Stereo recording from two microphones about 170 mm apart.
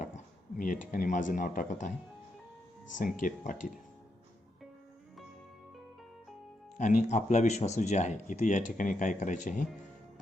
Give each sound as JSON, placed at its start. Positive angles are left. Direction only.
{"t": 0.0, "sound": "speech", "side_deg": 50}
{"t": 3.2, "sound": "speech", "side_deg": 50}
{"t": 6.7, "sound": "speech", "side_deg": 45}